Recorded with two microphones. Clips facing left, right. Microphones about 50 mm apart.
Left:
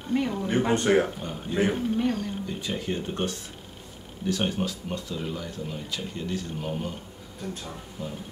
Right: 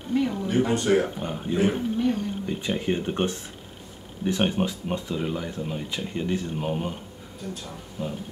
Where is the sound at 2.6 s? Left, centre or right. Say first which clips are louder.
Right 5 dB; right.